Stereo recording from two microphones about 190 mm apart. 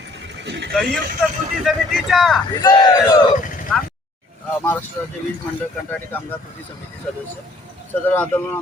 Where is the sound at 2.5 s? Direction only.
20° left (ahead or behind).